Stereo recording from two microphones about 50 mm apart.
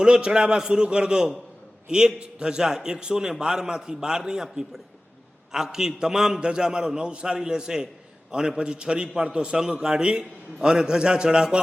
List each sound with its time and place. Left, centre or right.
0.0 s a man's voice: centre
5.5 s a man's voice: centre